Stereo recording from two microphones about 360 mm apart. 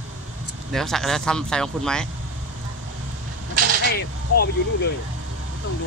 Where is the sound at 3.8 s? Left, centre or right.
Left.